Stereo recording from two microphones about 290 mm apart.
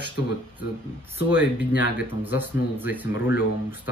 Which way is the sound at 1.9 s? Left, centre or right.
Centre.